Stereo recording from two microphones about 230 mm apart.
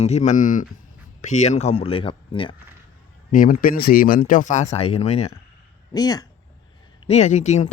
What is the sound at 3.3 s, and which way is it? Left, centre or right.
Speech, left.